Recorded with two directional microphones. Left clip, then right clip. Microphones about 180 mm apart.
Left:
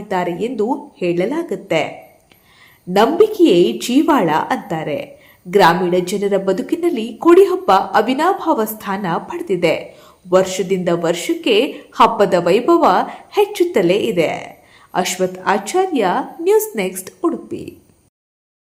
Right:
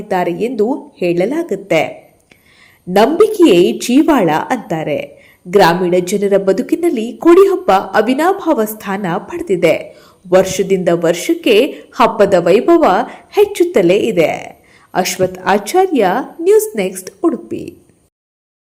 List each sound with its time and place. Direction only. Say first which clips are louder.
0.1 s a woman's voice: right 4 dB; 20° right (ahead or behind)
3.6 s a woman's voice: right 3 dB; 20° right (ahead or behind)